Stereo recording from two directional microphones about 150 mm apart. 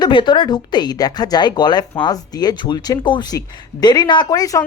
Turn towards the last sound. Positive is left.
turn(degrees=25)  # may be behind; listen again after turning